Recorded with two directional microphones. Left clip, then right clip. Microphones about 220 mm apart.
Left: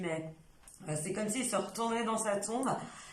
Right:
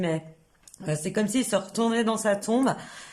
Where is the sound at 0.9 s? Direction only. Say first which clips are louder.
Right 8 dB; 40° right (ahead or behind).